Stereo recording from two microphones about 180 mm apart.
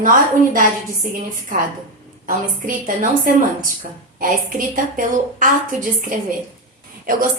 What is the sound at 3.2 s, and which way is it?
A woman's voice, 50° right (ahead or behind).